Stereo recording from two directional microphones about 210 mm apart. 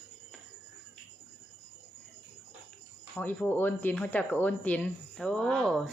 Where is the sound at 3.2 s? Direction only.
5° left (ahead or behind).